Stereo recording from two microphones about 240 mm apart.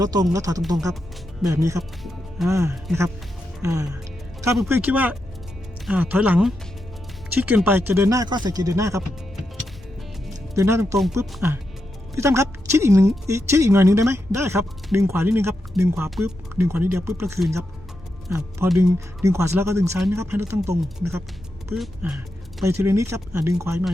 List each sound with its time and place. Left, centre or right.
0.0 s speech: centre
10.5 s speech: centre